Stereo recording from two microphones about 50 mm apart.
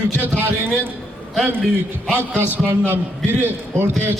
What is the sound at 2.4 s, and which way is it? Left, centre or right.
A man's voice, right.